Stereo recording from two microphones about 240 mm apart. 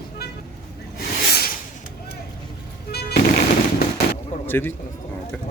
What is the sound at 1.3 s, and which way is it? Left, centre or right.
Rub, left.